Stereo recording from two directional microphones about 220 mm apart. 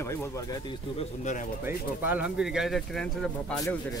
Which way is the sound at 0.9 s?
35° left (ahead or behind).